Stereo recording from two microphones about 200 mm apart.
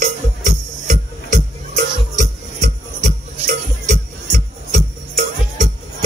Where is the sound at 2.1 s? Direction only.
35° right (ahead or behind).